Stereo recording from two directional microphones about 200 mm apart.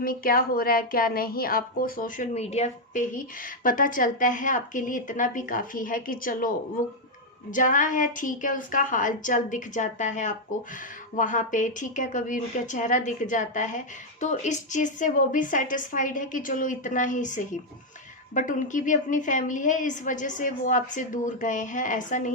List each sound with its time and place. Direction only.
0.0 s a woman's voice: 45° left (ahead or behind)